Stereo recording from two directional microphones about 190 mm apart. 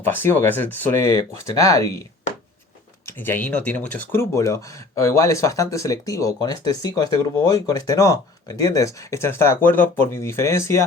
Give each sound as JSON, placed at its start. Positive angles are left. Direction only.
{"t": 0.0, "sound": "speech", "side_deg": 10}
{"t": 3.1, "sound": "speech", "side_deg": 10}